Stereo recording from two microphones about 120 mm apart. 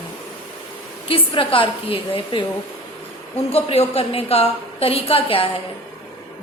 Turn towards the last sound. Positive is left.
turn(degrees=50)  # may be behind; listen again after turning